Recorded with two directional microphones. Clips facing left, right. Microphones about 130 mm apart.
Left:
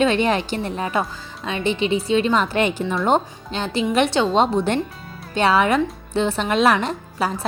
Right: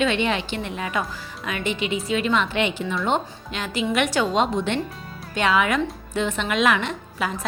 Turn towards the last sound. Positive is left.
turn(degrees=35)  # may be behind; listen again after turning